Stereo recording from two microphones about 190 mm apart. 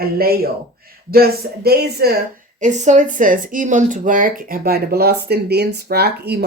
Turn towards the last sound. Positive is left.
turn(degrees=-60)  # may be behind; listen again after turning